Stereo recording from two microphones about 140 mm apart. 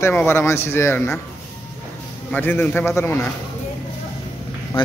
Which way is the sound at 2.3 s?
15° left (ahead or behind).